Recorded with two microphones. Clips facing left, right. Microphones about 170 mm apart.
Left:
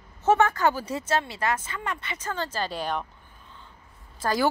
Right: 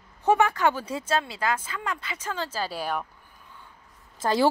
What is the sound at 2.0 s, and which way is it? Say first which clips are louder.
Speech: left 1 dB; 5° right (ahead or behind).